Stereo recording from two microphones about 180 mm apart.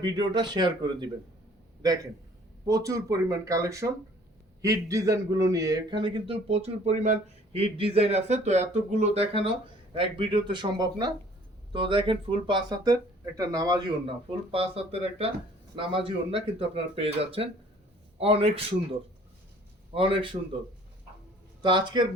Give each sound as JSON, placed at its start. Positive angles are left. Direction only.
{"t": 0.0, "sound": "a man's voice", "side_deg": -25}
{"t": 14.5, "sound": "a man's voice", "side_deg": -30}
{"t": 19.9, "sound": "speech", "side_deg": -30}
{"t": 21.6, "sound": "speech", "side_deg": -25}